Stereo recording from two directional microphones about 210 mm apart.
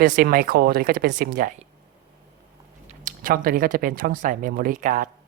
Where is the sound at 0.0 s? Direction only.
40° right (ahead or behind).